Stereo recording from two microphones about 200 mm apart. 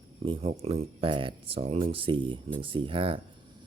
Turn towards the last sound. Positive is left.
turn(degrees=-25)  # may be behind; listen again after turning